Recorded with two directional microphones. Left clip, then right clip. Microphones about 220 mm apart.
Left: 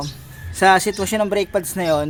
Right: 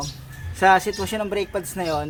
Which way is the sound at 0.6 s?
45° left (ahead or behind).